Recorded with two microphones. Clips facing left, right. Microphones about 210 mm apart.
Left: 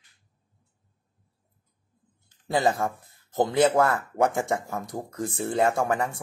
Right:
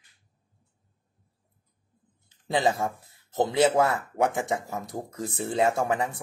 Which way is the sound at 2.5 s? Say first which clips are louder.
Left 1 dB; 20° right (ahead or behind).